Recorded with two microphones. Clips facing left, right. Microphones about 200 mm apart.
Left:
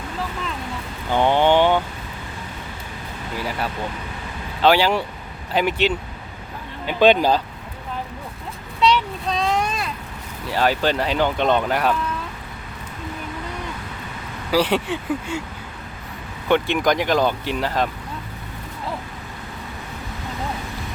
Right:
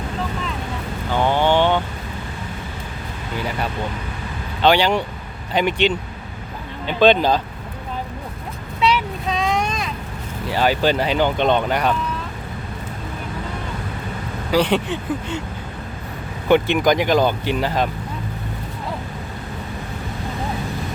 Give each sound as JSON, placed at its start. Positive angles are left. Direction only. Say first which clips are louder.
{"t": 1.1, "sound": "vehicle", "louder": "left 1 dB", "side_deg": 15}
{"t": 3.3, "sound": "speech", "louder": "right 2 dB", "side_deg": 5}
{"t": 8.8, "sound": "a sound", "louder": "left 1 dB", "side_deg": -5}
{"t": 10.5, "sound": "speech", "louder": "right 2 dB", "side_deg": 0}
{"t": 14.5, "sound": "speech", "louder": "right 1 dB", "side_deg": 5}
{"t": 16.5, "sound": "speech", "louder": "right 3 dB", "side_deg": 0}